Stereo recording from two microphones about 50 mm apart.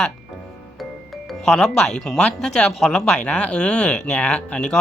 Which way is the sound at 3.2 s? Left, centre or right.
Left.